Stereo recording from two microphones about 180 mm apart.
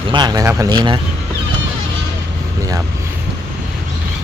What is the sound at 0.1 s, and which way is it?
Speech, 25° right (ahead or behind).